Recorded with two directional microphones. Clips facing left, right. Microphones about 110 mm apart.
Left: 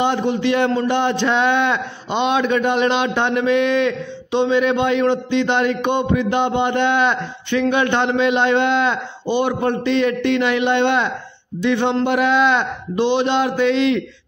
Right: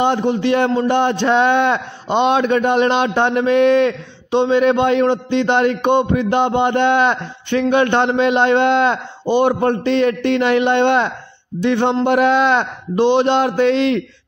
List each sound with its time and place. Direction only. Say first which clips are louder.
0.0 s speech: right 2 dB; 40° right (ahead or behind)